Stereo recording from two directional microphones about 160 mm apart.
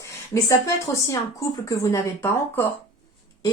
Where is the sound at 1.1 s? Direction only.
20° left (ahead or behind).